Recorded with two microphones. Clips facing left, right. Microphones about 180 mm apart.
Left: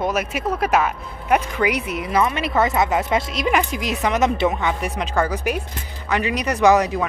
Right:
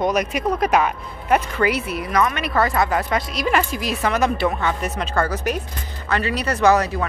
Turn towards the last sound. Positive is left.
turn(degrees=15)  # may be behind; listen again after turning